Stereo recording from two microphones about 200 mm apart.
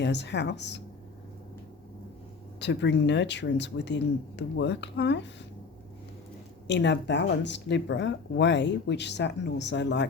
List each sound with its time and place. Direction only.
0.0 s speech: 60° left (ahead or behind)
2.6 s speech: 60° left (ahead or behind)
6.7 s speech: 60° left (ahead or behind)